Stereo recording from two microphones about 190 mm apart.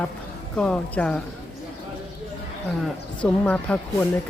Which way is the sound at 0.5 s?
5° left (ahead or behind).